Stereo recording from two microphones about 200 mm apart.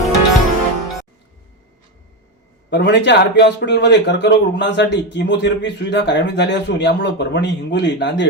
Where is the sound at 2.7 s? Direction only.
60° left (ahead or behind).